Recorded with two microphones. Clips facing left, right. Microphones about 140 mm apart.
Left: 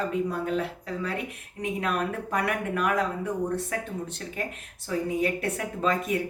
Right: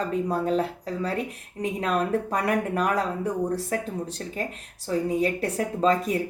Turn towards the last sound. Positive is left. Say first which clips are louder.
# right 4 dB
turn(degrees=-35)  # may be behind; listen again after turning